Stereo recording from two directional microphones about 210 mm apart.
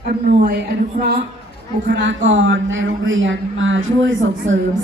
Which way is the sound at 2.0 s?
60° right (ahead or behind).